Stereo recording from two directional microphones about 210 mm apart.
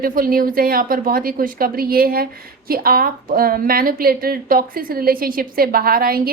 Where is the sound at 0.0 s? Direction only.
45° right (ahead or behind).